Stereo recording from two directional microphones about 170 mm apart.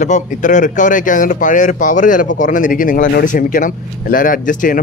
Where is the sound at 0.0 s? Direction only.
45° left (ahead or behind).